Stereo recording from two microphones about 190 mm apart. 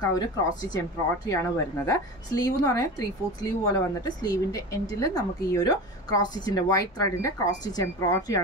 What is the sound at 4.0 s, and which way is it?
Speech, 20° left (ahead or behind).